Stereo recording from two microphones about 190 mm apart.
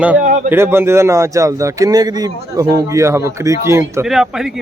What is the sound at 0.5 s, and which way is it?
A man's voice, 10° right (ahead or behind).